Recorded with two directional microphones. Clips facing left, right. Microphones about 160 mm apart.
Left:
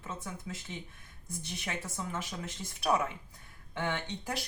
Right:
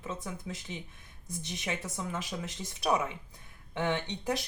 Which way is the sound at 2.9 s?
20° right (ahead or behind).